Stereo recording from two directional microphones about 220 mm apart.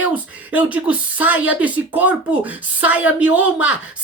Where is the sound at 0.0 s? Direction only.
5° right (ahead or behind).